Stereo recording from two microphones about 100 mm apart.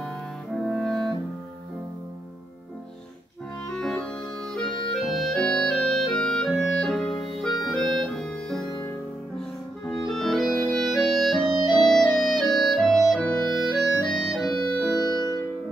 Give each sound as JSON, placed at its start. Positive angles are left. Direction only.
{"t": 0.6, "sound": "clarinet", "side_deg": 5}
{"t": 3.7, "sound": "music", "side_deg": 5}
{"t": 5.0, "sound": "clarinet", "side_deg": 0}
{"t": 9.8, "sound": "clarinet", "side_deg": 0}
{"t": 10.6, "sound": "music", "side_deg": 0}
{"t": 11.8, "sound": "clarinet", "side_deg": 0}
{"t": 15.0, "sound": "music", "side_deg": 45}